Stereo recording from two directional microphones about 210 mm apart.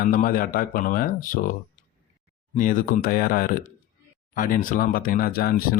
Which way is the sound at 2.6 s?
40° left (ahead or behind).